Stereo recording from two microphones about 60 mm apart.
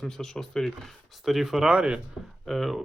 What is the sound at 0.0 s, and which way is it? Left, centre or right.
Speech, centre.